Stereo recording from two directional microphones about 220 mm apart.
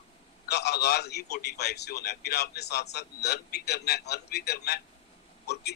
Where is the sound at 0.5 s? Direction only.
50° left (ahead or behind).